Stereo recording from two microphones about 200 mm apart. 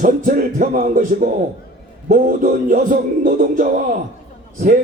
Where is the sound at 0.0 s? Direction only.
40° right (ahead or behind).